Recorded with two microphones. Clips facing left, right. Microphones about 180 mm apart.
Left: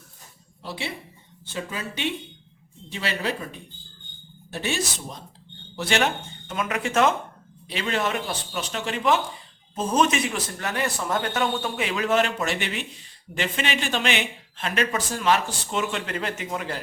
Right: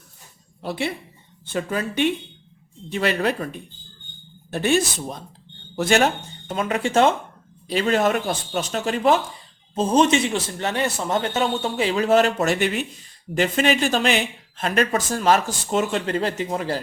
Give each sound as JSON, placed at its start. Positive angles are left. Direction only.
{"t": 0.6, "sound": "a man's voice", "side_deg": -55}